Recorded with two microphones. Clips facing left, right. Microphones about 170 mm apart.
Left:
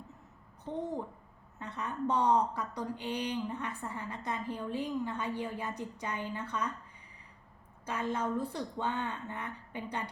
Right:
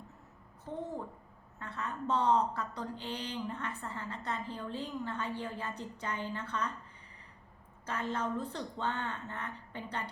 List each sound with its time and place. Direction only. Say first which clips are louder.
0.7 s a child's voice: left 3 dB; 20° left (ahead or behind)
7.9 s a woman's voice: left 2 dB; 10° left (ahead or behind)